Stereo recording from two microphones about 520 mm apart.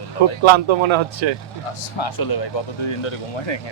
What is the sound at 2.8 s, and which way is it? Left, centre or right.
Speech, left.